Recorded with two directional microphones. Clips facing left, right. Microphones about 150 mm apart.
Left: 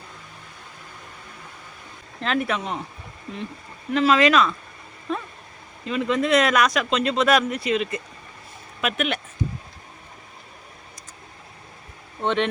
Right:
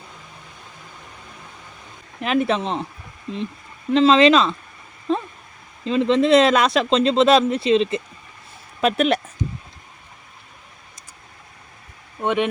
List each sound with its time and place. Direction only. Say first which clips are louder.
2.2 s speech: right 5 dB; 20° right (ahead or behind)
3.9 s speech: right 4 dB; 25° right (ahead or behind)
5.1 s a sound: right 6 dB; 30° right (ahead or behind)
5.8 s speech: right 6 dB; 25° right (ahead or behind)
12.2 s speech: right 2 dB; 10° right (ahead or behind)